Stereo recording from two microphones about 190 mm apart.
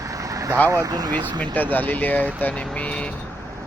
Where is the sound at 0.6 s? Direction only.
20° right (ahead or behind).